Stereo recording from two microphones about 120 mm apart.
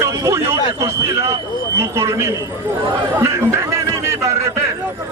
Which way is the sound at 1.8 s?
20° right (ahead or behind).